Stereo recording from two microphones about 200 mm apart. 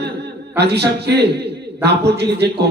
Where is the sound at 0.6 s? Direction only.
55° right (ahead or behind).